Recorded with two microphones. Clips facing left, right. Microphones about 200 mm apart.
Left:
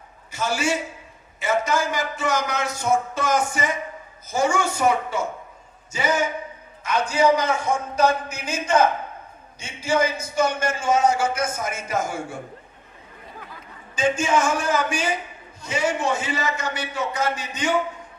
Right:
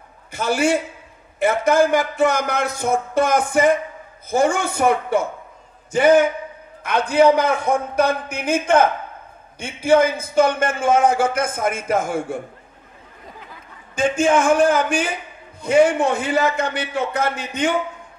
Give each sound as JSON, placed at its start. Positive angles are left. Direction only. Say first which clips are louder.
{"t": 0.3, "sound": "a man's voice", "louder": "right 5 dB", "side_deg": -55}
{"t": 13.9, "sound": "a man's voice", "louder": "right 4 dB", "side_deg": -55}